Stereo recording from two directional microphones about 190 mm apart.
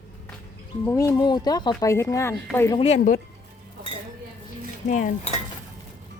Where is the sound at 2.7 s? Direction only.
30° left (ahead or behind).